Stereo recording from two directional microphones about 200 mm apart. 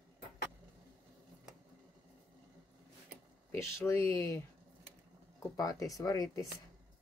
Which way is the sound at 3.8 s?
15° left (ahead or behind).